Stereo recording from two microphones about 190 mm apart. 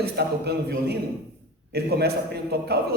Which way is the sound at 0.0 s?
60° right (ahead or behind).